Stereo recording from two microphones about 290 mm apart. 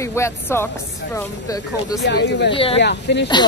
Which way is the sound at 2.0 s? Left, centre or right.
Left.